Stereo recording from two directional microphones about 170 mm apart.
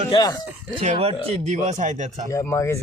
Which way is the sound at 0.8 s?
40° right (ahead or behind).